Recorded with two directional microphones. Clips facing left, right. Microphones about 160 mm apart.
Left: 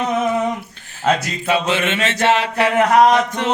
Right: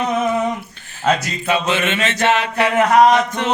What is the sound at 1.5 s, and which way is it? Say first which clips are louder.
Chant: even; 30° left (ahead or behind).